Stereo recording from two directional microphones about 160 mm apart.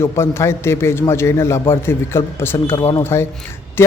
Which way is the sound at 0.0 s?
15° left (ahead or behind).